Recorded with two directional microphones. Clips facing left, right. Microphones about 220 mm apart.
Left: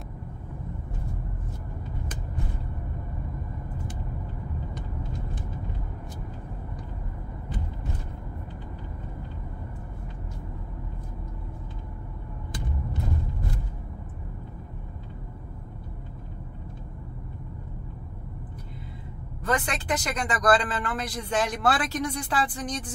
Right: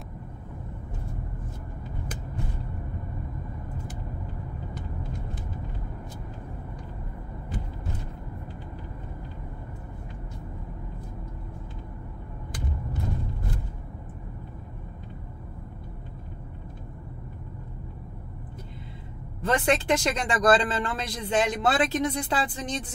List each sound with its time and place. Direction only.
19.4 s speech: 25° right (ahead or behind)